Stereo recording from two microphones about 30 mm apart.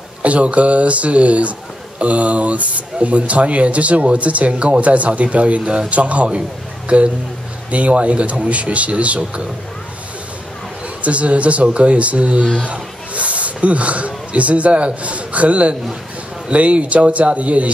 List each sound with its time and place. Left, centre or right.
0.2 s speech: right
11.0 s speech: right